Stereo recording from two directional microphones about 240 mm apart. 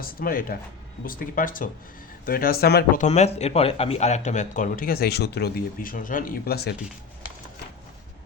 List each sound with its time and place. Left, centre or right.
0.0 s speech: left